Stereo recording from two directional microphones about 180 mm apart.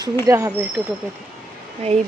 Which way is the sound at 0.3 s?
15° right (ahead or behind).